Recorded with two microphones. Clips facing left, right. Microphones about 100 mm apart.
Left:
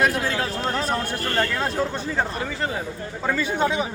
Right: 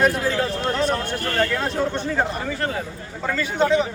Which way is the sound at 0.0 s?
Centre (ahead or behind).